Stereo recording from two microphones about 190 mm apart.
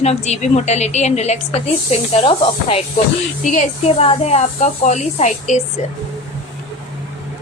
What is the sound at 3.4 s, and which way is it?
A woman's voice, 45° left (ahead or behind).